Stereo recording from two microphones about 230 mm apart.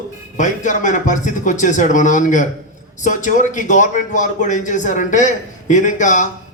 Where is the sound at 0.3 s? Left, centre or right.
Left.